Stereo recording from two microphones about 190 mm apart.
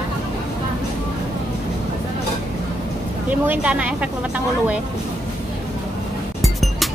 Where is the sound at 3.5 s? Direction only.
5° right (ahead or behind).